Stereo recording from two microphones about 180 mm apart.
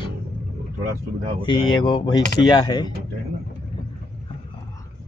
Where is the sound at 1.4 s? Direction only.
25° left (ahead or behind).